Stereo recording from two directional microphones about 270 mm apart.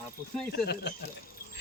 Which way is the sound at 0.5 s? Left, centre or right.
Left.